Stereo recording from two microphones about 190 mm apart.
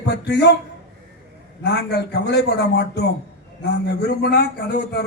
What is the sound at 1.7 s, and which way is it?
A man's voice, 60° left (ahead or behind).